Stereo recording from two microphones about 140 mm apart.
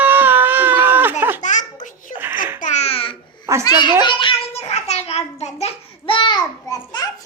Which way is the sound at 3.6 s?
35° left (ahead or behind).